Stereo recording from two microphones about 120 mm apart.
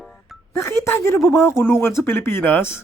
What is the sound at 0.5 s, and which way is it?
A woman's voice, 20° left (ahead or behind).